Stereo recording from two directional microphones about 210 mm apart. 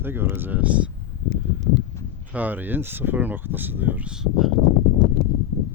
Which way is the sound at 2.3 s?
10° right (ahead or behind).